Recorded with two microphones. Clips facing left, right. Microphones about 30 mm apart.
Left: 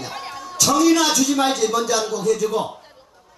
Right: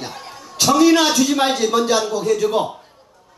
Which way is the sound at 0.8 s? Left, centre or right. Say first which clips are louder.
Right 3 dB; right.